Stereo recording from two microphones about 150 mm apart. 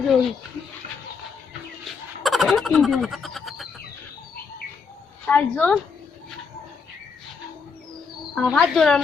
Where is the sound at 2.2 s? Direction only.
Centre (ahead or behind).